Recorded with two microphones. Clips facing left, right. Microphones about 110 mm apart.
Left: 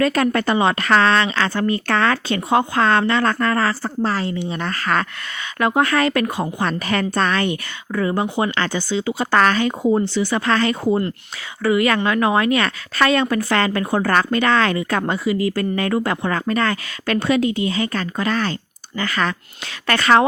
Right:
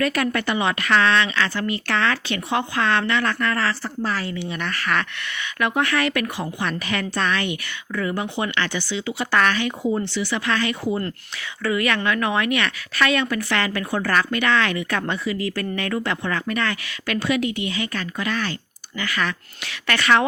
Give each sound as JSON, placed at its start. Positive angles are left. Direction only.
{"t": 0.0, "sound": "speech", "side_deg": 35}
{"t": 6.6, "sound": "a woman's voice", "side_deg": 40}
{"t": 9.3, "sound": "a woman's voice", "side_deg": 40}
{"t": 11.7, "sound": "speech", "side_deg": 25}
{"t": 15.3, "sound": "speech", "side_deg": 25}
{"t": 15.5, "sound": "speech", "side_deg": 35}